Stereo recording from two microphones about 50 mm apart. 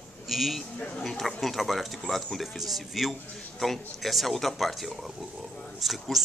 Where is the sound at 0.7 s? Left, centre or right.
Left.